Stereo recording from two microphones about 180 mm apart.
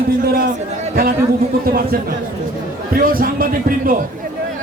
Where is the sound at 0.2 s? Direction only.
55° right (ahead or behind).